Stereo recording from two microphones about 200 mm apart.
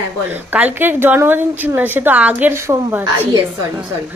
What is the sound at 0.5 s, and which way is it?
A woman's voice, 10° right (ahead or behind).